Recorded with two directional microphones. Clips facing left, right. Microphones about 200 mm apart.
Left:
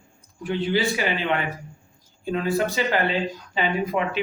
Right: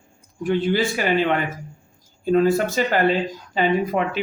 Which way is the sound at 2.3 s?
45° right (ahead or behind).